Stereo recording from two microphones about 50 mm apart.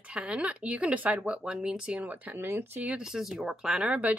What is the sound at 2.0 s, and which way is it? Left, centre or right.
Speech, right.